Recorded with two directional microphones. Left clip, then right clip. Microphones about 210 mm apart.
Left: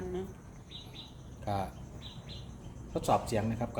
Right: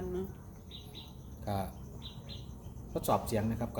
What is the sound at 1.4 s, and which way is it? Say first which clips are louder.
Speech: left 2 dB; 10° left (ahead or behind).